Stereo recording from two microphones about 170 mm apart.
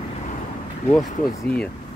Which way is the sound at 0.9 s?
5° left (ahead or behind).